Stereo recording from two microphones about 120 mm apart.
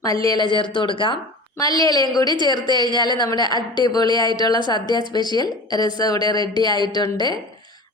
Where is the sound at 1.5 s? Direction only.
30° left (ahead or behind).